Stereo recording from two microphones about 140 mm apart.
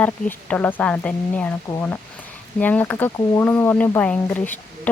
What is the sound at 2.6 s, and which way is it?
Speech, 10° left (ahead or behind).